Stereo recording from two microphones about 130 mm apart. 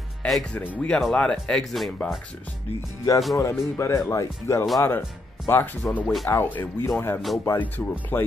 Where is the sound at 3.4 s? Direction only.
20° left (ahead or behind).